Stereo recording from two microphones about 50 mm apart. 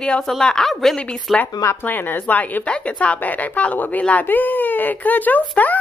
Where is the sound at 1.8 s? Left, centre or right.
Left.